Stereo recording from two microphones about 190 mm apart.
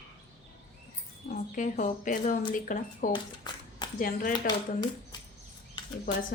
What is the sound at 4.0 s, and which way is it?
Speech, 45° left (ahead or behind).